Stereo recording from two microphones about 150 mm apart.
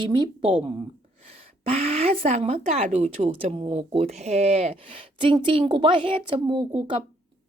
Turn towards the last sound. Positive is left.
turn(degrees=-35)  # may be behind; listen again after turning